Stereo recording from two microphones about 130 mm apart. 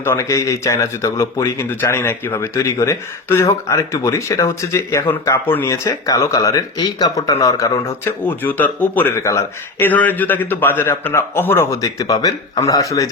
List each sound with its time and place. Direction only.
0.0 s speech: 20° left (ahead or behind)
8.4 s speech: 15° left (ahead or behind)